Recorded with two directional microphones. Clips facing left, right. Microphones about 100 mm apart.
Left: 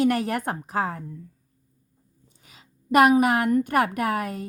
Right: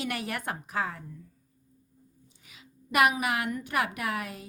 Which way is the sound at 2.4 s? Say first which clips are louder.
Left 14 dB; 40° left (ahead or behind).